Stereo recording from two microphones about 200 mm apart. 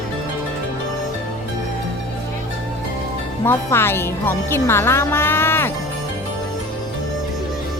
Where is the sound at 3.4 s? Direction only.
10° left (ahead or behind).